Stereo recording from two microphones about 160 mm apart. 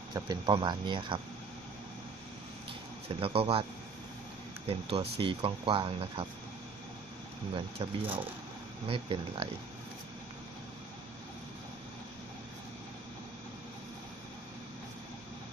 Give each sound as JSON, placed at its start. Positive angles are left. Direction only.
{"t": 0.1, "sound": "speech", "side_deg": -25}
{"t": 3.2, "sound": "speech", "side_deg": -35}
{"t": 4.7, "sound": "speech", "side_deg": -35}
{"t": 7.5, "sound": "speech", "side_deg": -30}